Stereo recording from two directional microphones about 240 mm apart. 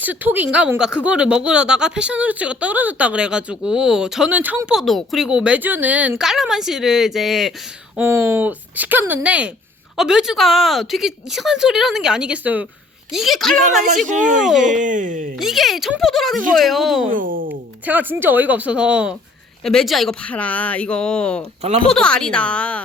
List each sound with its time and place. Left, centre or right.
0.0 s speech: centre
14.6 s speech: right
15.4 s speech: centre
17.1 s speech: right
17.8 s speech: centre